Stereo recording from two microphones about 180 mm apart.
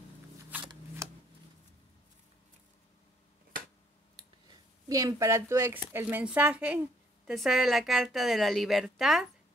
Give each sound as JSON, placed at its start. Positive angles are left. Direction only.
{"t": 0.5, "sound": "shuffling cards", "side_deg": -10}
{"t": 4.5, "sound": "a woman's voice", "side_deg": -20}